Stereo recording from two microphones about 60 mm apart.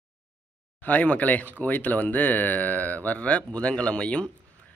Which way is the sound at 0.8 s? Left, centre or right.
Left.